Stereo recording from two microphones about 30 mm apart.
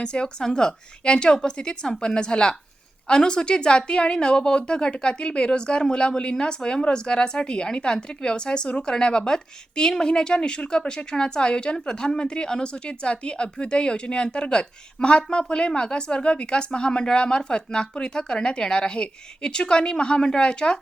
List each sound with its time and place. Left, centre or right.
0.0 s a woman's voice: left